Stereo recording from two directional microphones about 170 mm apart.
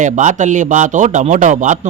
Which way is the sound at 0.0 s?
45° right (ahead or behind).